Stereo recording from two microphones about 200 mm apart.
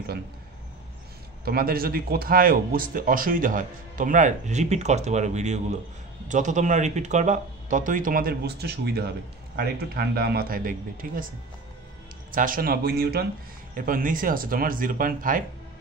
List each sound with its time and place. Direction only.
1.4 s speech: 50° right (ahead or behind)
12.3 s speech: 45° right (ahead or behind)